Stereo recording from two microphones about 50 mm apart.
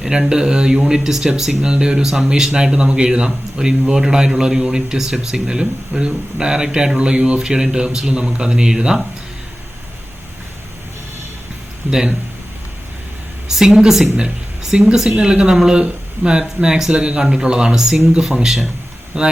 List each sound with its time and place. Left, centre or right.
0.0 s speech: centre
11.9 s speech: centre
13.5 s speech: centre
14.2 s a sound: centre
14.9 s speech: centre